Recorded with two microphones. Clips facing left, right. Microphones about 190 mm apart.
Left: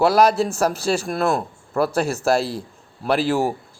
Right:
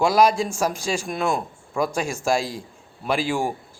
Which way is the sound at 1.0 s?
5° left (ahead or behind).